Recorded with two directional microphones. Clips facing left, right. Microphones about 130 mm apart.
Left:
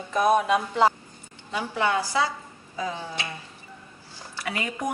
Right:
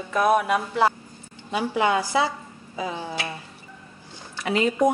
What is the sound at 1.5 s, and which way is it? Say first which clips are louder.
Speech: right 3 dB; 15° right (ahead or behind).